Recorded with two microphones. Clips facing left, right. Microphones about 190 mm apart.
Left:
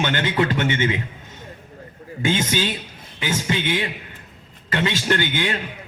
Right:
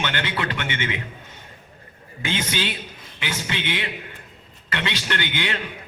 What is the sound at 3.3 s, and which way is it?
A man's voice, 35° left (ahead or behind).